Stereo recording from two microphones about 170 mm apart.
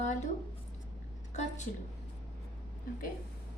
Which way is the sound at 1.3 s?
45° left (ahead or behind).